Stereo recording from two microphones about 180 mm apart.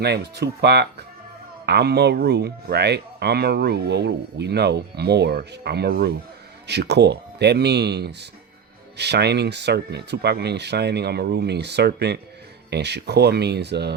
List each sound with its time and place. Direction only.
0.0 s speech: 65° right (ahead or behind)